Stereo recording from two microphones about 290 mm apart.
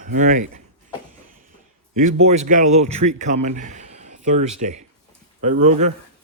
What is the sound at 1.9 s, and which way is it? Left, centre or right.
A man's voice, right.